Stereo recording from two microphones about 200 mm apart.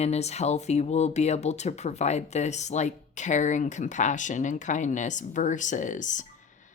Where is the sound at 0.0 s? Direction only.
35° left (ahead or behind).